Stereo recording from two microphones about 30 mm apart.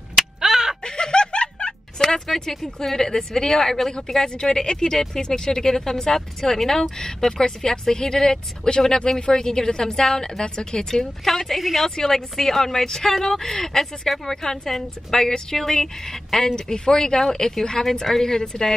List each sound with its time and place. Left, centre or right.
0.1 s crow: centre
0.8 s music: left
2.0 s a woman's voice: centre
10.9 s a woman's voice: centre
16.5 s a woman's voice: left